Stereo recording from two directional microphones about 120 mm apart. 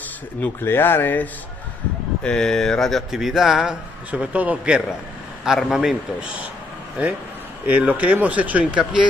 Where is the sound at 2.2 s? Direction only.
5° left (ahead or behind); by 8.8 s 10° right (ahead or behind).